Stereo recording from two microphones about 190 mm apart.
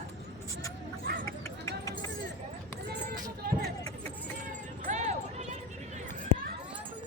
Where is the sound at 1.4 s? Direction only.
15° left (ahead or behind).